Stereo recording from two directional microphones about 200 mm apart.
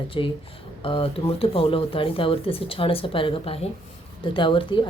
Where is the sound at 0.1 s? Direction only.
25° left (ahead or behind).